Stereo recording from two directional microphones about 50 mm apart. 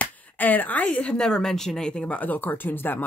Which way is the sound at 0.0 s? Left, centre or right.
Left.